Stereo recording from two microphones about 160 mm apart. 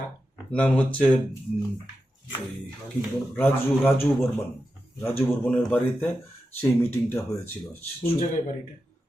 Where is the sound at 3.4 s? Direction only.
15° left (ahead or behind).